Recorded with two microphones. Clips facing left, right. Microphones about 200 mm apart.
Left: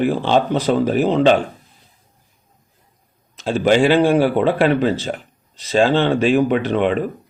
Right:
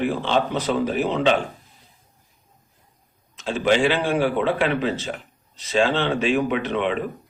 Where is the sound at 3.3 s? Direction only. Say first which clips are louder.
Left 5 dB; 35° left (ahead or behind).